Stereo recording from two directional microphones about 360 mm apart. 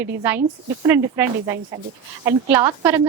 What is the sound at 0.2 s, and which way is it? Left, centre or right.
A woman's voice, centre.